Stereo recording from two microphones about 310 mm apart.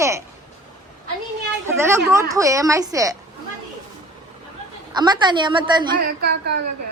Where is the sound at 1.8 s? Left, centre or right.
Centre.